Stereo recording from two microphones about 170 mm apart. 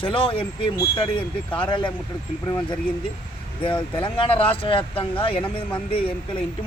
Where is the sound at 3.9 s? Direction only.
30° left (ahead or behind).